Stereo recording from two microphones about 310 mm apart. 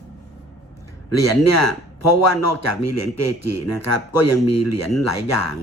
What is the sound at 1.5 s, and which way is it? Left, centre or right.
A man's voice, left.